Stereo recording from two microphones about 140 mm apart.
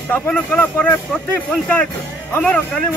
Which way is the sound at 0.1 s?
15° left (ahead or behind).